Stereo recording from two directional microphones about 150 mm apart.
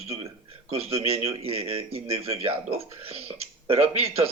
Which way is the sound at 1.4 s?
40° right (ahead or behind).